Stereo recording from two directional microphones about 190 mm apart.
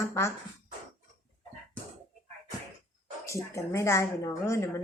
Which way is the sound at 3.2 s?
15° left (ahead or behind).